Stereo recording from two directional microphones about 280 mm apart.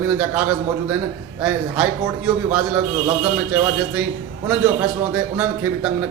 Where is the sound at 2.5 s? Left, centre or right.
Centre.